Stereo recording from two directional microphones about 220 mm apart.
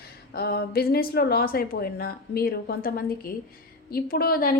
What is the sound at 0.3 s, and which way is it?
A woman's voice, 45° left (ahead or behind).